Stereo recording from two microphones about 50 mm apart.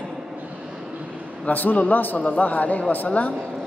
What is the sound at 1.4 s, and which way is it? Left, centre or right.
A man's voice, left.